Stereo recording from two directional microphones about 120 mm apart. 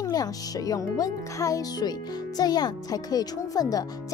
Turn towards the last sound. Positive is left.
turn(degrees=30)  # may be behind; listen again after turning